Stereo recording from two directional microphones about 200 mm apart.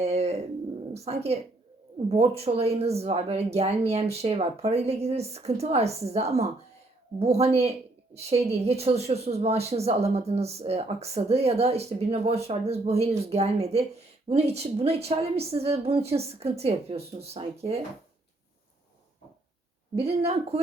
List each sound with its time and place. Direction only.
0.0 s a sound: 30° right (ahead or behind)
0.9 s a woman's voice: 30° right (ahead or behind)
20.0 s speech: 30° right (ahead or behind)